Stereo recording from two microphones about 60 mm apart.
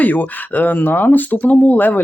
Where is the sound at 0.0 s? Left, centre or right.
Left.